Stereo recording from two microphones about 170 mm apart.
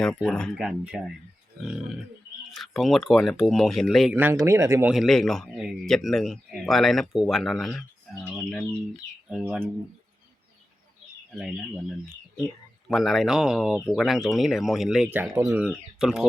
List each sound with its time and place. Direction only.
0.0 s a man's voice: 5° left (ahead or behind); by 4.9 s 15° right (ahead or behind)
4.9 s a man's voice: centre (ahead or behind)
11.3 s a man's voice: 5° right (ahead or behind)
12.9 s a man's voice: centre (ahead or behind)